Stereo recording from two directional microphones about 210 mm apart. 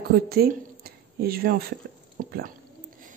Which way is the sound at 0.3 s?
45° right (ahead or behind).